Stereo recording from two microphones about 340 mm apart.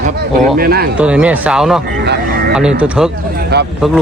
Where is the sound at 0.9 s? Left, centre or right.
Centre.